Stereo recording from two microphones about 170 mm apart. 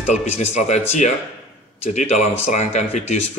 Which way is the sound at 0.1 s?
40° left (ahead or behind).